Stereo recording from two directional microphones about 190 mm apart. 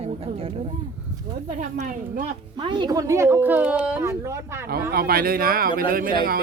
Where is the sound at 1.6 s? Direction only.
40° right (ahead or behind).